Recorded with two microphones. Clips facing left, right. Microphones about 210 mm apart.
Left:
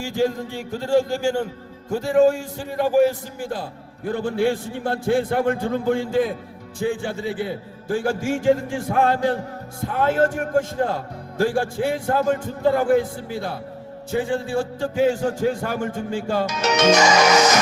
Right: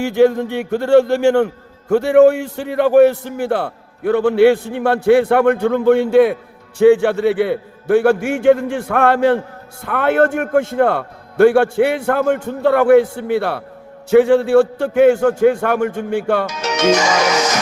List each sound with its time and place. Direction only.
0.0 s a man's voice: 65° right (ahead or behind)